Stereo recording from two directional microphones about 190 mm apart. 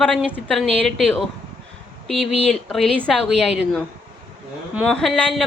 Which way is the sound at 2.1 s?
Centre (ahead or behind).